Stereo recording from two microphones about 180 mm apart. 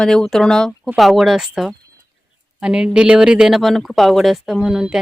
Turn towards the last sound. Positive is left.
turn(degrees=0)  # may be behind; listen again after turning